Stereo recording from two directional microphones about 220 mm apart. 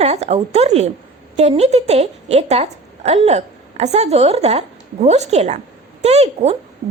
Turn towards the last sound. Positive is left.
turn(degrees=-30)  # may be behind; listen again after turning